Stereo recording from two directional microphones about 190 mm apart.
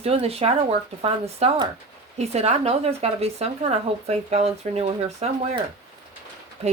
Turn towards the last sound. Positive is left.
turn(degrees=-35)  # may be behind; listen again after turning